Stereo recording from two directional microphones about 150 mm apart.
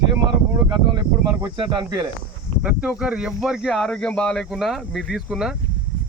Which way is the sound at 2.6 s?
5° right (ahead or behind).